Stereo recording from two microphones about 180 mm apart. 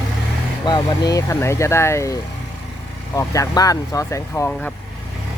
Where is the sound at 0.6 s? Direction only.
20° left (ahead or behind).